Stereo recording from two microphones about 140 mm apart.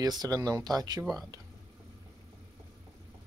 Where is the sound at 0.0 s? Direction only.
30° right (ahead or behind).